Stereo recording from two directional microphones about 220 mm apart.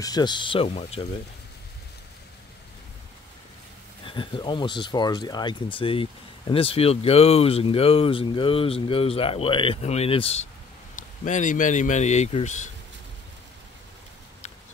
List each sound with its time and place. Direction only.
0.0 s speech: 20° left (ahead or behind)
4.0 s a man's voice: 20° left (ahead or behind)